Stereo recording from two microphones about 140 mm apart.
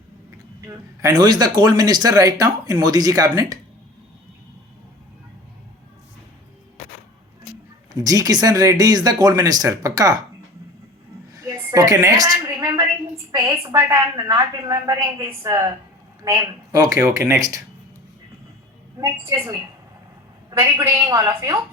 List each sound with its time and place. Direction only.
0.7 s a woman's voice: 30° right (ahead or behind)
7.9 s a woman's voice: 25° right (ahead or behind)
11.3 s a sound: 25° right (ahead or behind)
13.3 s a woman's voice: 20° right (ahead or behind)
18.9 s a woman's voice: 20° right (ahead or behind)